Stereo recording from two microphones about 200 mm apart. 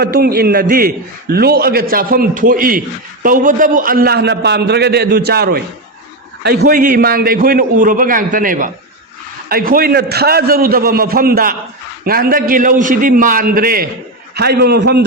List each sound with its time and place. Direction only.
0.0 s a man's voice: 50° right (ahead or behind)